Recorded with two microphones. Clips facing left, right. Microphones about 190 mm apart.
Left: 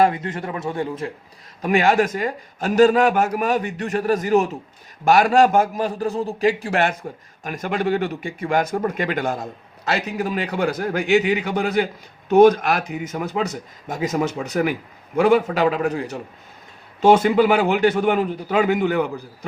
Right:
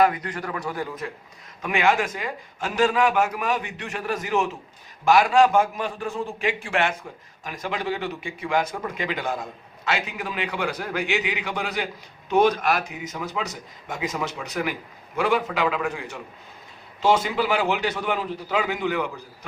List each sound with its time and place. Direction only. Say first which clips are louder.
0.0 s a man's voice: left 3 dB; 25° left (ahead or behind)
1.6 s a man's voice: left 5 dB; 40° left (ahead or behind)
17.0 s speech: left 7 dB; 55° left (ahead or behind)